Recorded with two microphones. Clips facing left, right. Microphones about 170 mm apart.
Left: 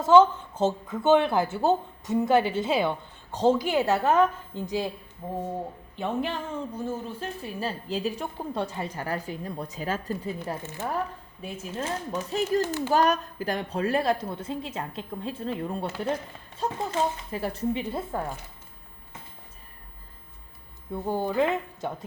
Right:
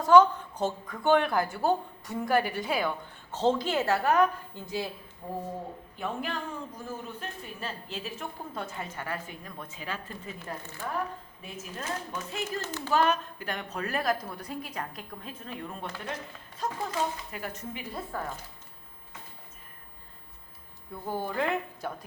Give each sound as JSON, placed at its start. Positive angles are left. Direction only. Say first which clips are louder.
{"t": 0.0, "sound": "a woman's voice", "louder": "left 2 dB", "side_deg": 20}
{"t": 3.3, "sound": "a woman's voice", "louder": "left 4 dB", "side_deg": 10}
{"t": 10.4, "sound": "a woman's voice", "louder": "left 6 dB", "side_deg": 20}
{"t": 11.6, "sound": "a woman's voice", "louder": "left 5 dB", "side_deg": 30}
{"t": 20.9, "sound": "a woman's voice", "louder": "left 6 dB", "side_deg": 20}